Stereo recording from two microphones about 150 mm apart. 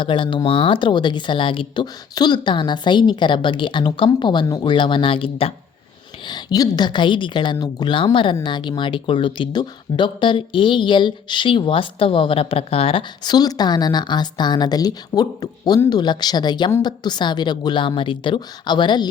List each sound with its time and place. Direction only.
0.0 s speech: 35° left (ahead or behind)
6.2 s a woman's voice: 25° left (ahead or behind)